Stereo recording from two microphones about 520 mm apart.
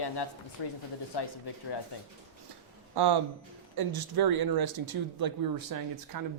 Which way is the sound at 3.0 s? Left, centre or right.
Right.